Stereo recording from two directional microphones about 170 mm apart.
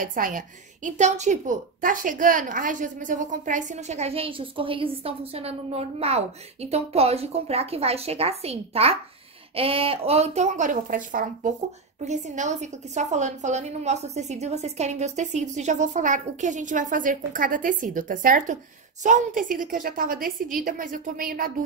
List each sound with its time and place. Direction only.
0.0 s a woman's voice: 55° right (ahead or behind)